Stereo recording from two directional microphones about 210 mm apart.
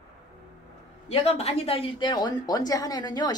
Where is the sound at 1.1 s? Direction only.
30° left (ahead or behind).